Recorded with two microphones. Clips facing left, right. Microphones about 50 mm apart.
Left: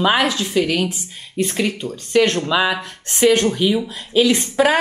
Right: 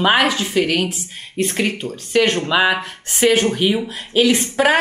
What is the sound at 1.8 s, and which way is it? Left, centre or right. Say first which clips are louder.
Speech: even; centre.